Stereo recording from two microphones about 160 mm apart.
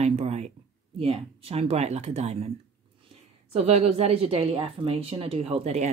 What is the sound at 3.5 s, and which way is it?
A woman's voice, 40° right (ahead or behind).